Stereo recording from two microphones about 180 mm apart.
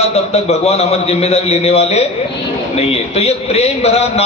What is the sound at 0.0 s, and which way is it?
A man's voice, 35° left (ahead or behind).